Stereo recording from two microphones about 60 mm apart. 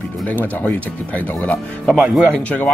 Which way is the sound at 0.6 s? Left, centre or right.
Left.